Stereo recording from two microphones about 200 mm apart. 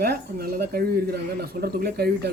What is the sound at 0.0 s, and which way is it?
A man's voice, 50° right (ahead or behind).